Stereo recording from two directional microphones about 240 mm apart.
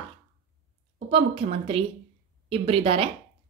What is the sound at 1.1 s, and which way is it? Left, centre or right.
A woman's voice, right.